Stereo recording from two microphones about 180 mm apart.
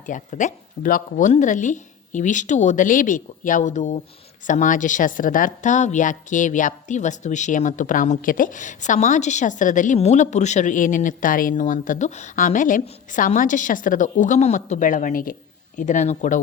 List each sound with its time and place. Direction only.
0.0 s a woman's voice: 45° left (ahead or behind)